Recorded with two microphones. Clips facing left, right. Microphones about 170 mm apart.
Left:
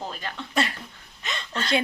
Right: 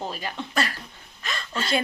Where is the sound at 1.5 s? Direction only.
5° right (ahead or behind).